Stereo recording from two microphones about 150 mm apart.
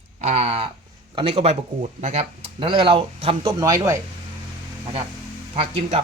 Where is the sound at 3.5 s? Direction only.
25° right (ahead or behind).